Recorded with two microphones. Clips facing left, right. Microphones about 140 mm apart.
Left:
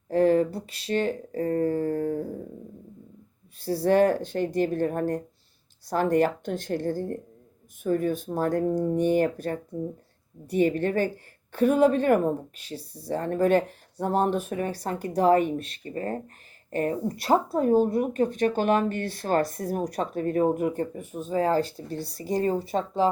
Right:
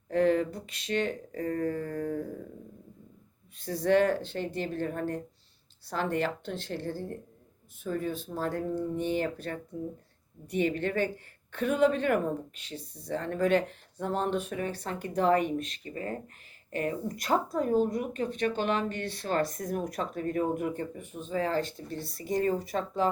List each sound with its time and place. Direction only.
0.1 s speech: 35° left (ahead or behind)
3.6 s speech: 35° left (ahead or behind)